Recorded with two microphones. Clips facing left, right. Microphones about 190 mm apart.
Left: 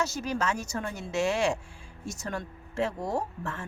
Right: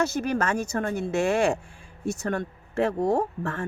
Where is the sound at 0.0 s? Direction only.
60° right (ahead or behind).